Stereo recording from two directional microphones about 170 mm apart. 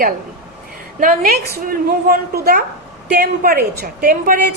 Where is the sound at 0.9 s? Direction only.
55° right (ahead or behind).